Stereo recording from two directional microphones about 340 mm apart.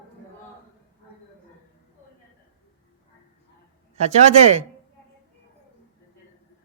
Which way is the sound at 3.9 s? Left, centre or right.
Centre.